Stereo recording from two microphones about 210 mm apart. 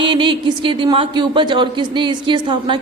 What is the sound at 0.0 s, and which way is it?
Speech, 25° right (ahead or behind).